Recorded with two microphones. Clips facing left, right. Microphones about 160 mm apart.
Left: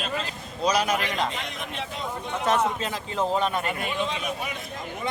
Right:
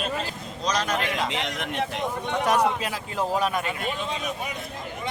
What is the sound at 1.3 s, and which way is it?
Speech, 80° right.